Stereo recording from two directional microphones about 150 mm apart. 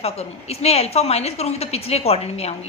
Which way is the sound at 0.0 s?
45° left (ahead or behind).